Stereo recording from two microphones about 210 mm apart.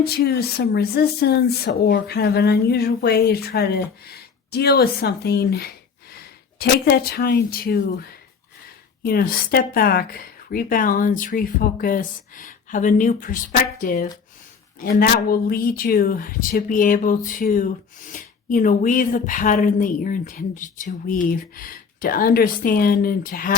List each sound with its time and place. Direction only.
0.0 s speech: 50° left (ahead or behind)